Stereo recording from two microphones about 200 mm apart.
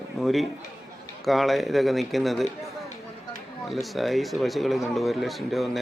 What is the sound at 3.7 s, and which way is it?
A man's voice, centre (ahead or behind).